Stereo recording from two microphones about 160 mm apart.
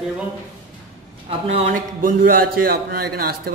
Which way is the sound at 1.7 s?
60° right (ahead or behind).